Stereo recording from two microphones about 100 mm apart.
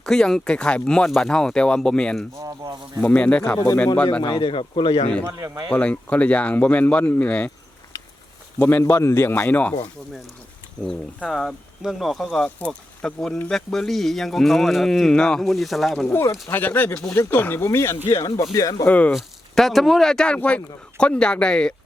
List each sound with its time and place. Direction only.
0.0 s speech: 5° left (ahead or behind)
2.4 s speech: 35° right (ahead or behind)
3.0 s speech: 15° left (ahead or behind)
4.2 s speech: 55° left (ahead or behind)
5.2 s speech: 30° right (ahead or behind)
5.7 s speech: 15° left (ahead or behind)
8.5 s speech: 20° left (ahead or behind)
10.8 s speech: 5° left (ahead or behind)
16.1 s speech: 25° left (ahead or behind)
18.9 s speech: 15° left (ahead or behind)
19.1 s speech: centre (ahead or behind)